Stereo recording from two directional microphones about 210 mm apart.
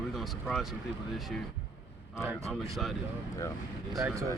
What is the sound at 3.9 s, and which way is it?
Speech, 15° right (ahead or behind).